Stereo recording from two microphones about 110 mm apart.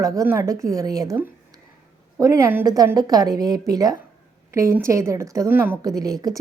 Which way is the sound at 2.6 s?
35° right (ahead or behind).